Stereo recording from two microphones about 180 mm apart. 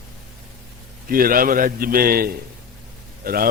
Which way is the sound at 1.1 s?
55° right (ahead or behind).